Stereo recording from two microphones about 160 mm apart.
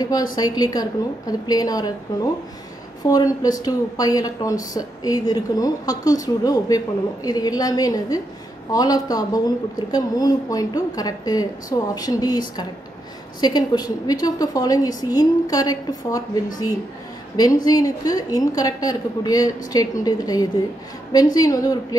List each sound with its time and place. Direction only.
0.0 s speech: 25° left (ahead or behind)